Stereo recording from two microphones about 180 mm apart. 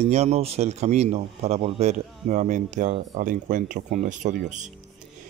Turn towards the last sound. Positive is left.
turn(degrees=-45)  # may be behind; listen again after turning